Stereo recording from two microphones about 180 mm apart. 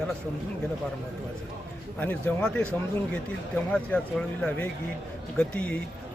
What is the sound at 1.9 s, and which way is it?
Speech, 10° left (ahead or behind).